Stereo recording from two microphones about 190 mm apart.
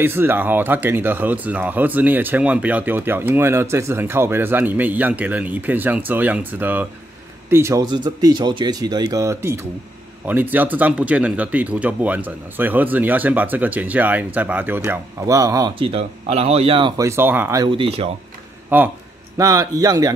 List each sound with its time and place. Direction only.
0.0 s speech: 10° right (ahead or behind)
17.6 s speech: 30° right (ahead or behind)
18.7 s speech: 10° right (ahead or behind)